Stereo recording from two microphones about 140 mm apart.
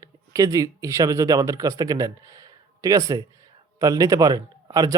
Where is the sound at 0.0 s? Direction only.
25° right (ahead or behind).